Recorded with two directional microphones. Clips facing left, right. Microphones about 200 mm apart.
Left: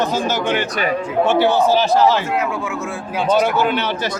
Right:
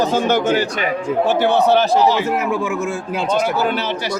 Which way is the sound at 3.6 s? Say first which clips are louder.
Left 1 dB; 35° right (ahead or behind).